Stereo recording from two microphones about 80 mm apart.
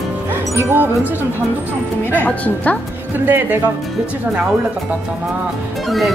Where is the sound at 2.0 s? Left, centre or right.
Left.